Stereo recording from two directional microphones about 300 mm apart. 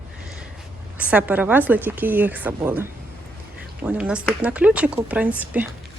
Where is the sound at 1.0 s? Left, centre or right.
Centre.